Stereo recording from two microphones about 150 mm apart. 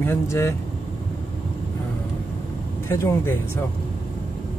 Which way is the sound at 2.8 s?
15° left (ahead or behind).